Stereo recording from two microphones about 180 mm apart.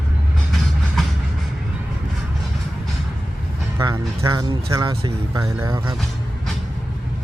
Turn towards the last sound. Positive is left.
turn(degrees=-20)  # may be behind; listen again after turning